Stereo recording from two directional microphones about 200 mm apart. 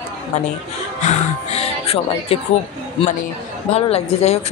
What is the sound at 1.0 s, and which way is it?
Speech, 35° left (ahead or behind).